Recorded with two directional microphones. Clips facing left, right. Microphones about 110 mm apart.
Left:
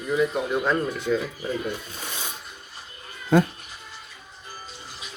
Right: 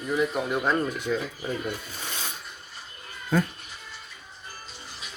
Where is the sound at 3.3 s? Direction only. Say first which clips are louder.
Left 6 dB; 70° left (ahead or behind).